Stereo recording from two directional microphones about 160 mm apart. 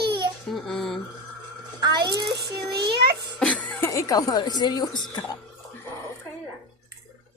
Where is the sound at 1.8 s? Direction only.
25° right (ahead or behind).